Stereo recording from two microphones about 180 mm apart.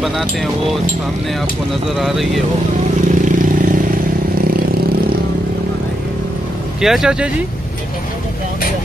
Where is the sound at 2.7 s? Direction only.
45° right (ahead or behind).